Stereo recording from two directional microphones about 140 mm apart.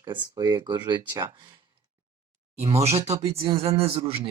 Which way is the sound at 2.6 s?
45° right (ahead or behind).